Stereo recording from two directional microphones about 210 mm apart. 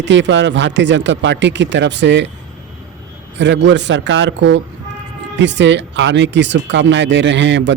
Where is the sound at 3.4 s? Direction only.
60° right (ahead or behind).